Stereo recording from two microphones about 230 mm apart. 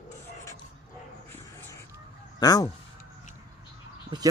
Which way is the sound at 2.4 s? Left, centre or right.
Centre.